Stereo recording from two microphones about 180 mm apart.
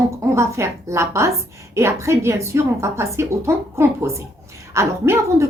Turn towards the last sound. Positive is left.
turn(degrees=-15)  # may be behind; listen again after turning